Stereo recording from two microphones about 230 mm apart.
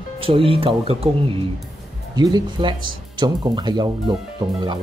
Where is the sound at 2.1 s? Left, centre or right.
Centre.